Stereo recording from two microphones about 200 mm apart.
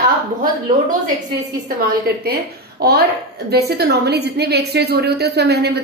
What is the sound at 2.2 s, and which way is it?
A woman's voice, 50° right (ahead or behind).